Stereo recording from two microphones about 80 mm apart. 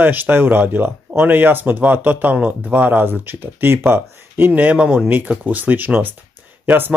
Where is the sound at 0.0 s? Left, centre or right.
Right.